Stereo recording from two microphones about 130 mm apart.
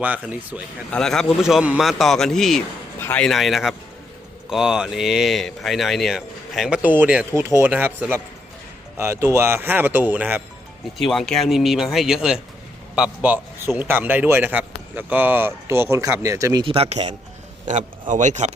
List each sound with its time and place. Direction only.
0.0 s a man's voice: 10° right (ahead or behind)
0.9 s speech: 5° left (ahead or behind)
3.0 s a man's voice: 15° left (ahead or behind)
3.2 s a man's voice: centre (ahead or behind)
10.9 s a man's voice: centre (ahead or behind); by 16.6 s 25° right (ahead or behind)
16.6 s speech: 50° right (ahead or behind)
18.1 s speech: 70° right (ahead or behind)